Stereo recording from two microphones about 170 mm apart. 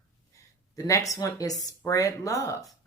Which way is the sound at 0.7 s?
20° left (ahead or behind).